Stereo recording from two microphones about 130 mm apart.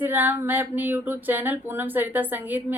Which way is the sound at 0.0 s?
15° right (ahead or behind).